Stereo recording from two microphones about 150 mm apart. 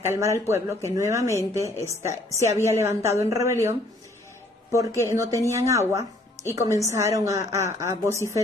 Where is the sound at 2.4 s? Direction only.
20° right (ahead or behind).